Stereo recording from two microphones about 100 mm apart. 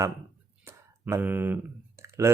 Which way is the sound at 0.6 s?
25° right (ahead or behind).